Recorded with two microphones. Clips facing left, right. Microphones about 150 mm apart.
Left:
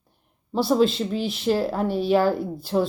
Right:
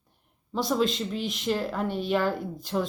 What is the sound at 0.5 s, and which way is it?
A woman's voice, 30° left (ahead or behind).